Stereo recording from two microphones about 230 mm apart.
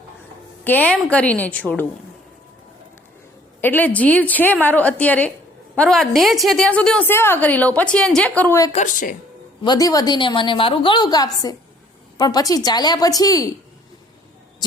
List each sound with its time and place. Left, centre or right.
0.6 s a woman's voice: centre
3.6 s a woman's voice: centre
8.7 s a woman's voice: left
9.6 s a woman's voice: centre